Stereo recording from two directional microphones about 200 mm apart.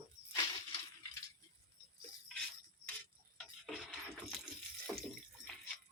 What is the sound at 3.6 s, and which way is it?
Music, centre (ahead or behind).